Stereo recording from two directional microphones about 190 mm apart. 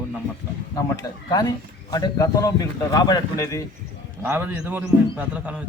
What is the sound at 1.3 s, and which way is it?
Speech, 20° left (ahead or behind).